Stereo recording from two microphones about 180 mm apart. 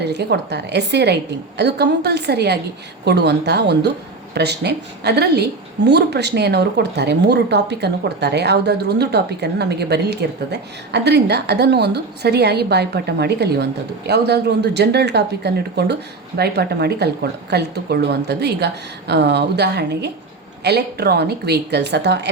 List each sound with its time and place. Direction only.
0.0 s a woman's voice: 65° right (ahead or behind)